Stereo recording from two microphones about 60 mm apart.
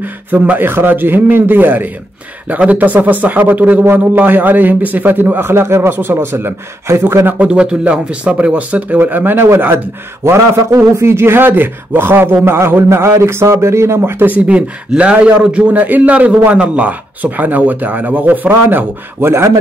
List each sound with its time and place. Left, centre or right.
0.3 s a man's voice: right
5.5 s a man's voice: right
7.3 s a man's voice: centre; by 9.8 s right
10.2 s a man's voice: right
11.0 s a man's voice: right
14.4 s speech: centre; by 19.3 s right
19.3 s a man's voice: right